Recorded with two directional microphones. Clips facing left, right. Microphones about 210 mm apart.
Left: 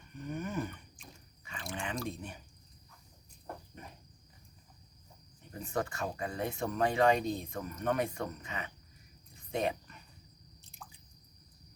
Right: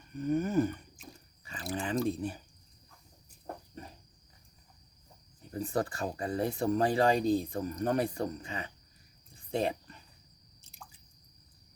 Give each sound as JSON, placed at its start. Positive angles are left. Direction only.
{"t": 0.2, "sound": "a sound", "side_deg": -40}
{"t": 1.7, "sound": "drip", "side_deg": -35}
{"t": 3.4, "sound": "cricket", "side_deg": -35}
{"t": 5.5, "sound": "speech", "side_deg": -35}
{"t": 9.3, "sound": "cricket", "side_deg": -30}
{"t": 10.6, "sound": "drip", "side_deg": 0}